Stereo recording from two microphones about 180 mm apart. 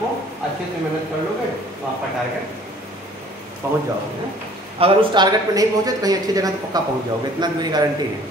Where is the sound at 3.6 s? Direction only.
15° right (ahead or behind).